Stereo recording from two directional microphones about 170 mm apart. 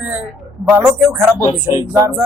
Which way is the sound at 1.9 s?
15° right (ahead or behind).